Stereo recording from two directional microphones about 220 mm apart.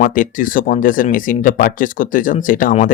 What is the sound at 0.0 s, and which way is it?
Speech, 40° left (ahead or behind).